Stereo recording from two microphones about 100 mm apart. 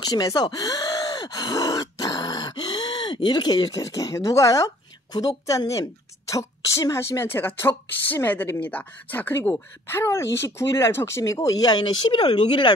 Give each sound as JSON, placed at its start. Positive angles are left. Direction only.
{"t": 0.0, "sound": "a woman's voice", "side_deg": 40}